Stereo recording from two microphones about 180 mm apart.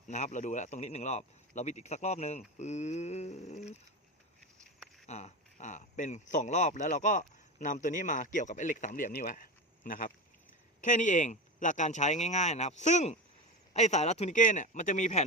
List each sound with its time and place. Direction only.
0.1 s speech: 40° left (ahead or behind)
4.6 s a sound: centre (ahead or behind)
5.0 s speech: 40° left (ahead or behind)